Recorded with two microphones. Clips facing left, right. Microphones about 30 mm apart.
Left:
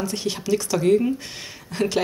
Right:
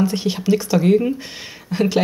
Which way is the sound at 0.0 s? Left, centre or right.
Centre.